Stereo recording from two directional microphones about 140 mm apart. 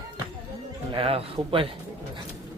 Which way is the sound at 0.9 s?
45° right (ahead or behind).